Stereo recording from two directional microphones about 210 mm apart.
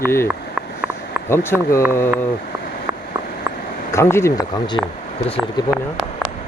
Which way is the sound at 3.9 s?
10° left (ahead or behind).